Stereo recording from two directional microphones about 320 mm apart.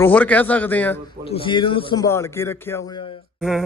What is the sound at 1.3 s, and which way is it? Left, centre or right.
Speech, centre.